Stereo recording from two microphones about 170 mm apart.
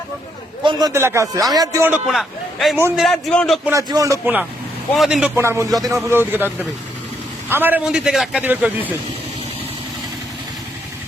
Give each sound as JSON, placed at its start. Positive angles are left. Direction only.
{"t": 0.6, "sound": "a man's voice", "side_deg": -25}
{"t": 2.0, "sound": "a man's voice", "side_deg": 0}
{"t": 2.7, "sound": "a man's voice", "side_deg": -15}
{"t": 3.0, "sound": "a man's voice", "side_deg": 0}
{"t": 3.7, "sound": "speech", "side_deg": -20}
{"t": 4.9, "sound": "a man's voice", "side_deg": -5}
{"t": 5.4, "sound": "a man's voice", "side_deg": -15}